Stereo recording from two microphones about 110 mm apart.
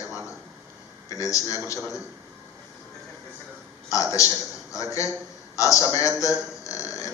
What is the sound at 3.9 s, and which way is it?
A man's voice, 30° left (ahead or behind).